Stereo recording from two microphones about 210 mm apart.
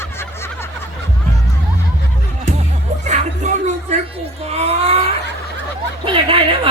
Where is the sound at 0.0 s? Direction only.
10° left (ahead or behind).